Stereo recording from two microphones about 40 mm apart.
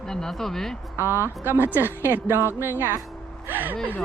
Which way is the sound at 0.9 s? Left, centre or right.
Right.